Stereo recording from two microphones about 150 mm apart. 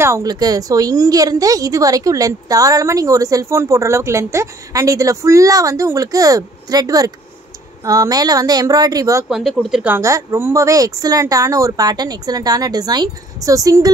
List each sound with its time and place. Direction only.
0.0 s a woman's voice: 20° right (ahead or behind)
9.3 s speech: centre (ahead or behind)
9.9 s a woman's voice: 20° right (ahead or behind)